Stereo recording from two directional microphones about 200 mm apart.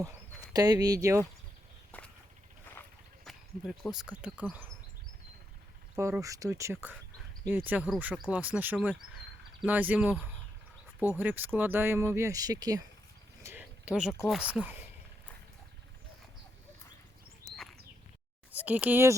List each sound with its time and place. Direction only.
0.5 s speech: 20° right (ahead or behind)
1.9 s walk: 10° left (ahead or behind)
3.2 s speech: centre (ahead or behind)
6.0 s speech: 15° right (ahead or behind)
13.4 s a sound: 10° right (ahead or behind)
14.3 s speech: 5° right (ahead or behind)
18.5 s speech: 5° right (ahead or behind)